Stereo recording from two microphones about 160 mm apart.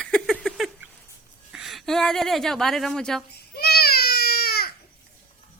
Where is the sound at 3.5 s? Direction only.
80° left.